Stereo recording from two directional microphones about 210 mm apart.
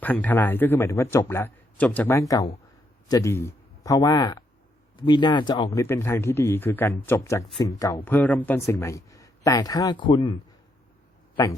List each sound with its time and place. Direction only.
0.0 s speech: 10° left (ahead or behind); by 10.3 s 25° left (ahead or behind)